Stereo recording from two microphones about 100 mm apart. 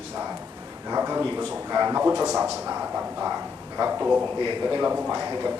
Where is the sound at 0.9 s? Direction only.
20° right (ahead or behind).